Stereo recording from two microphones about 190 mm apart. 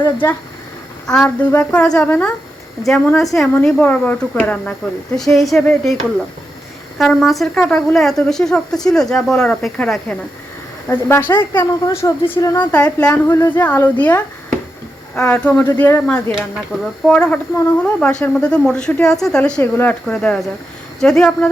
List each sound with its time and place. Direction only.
0.0 s a woman's voice: 10° left (ahead or behind)
12.7 s a woman's voice: 5° left (ahead or behind)